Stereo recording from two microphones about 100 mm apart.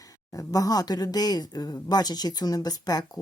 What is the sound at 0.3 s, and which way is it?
Speech, 35° left (ahead or behind).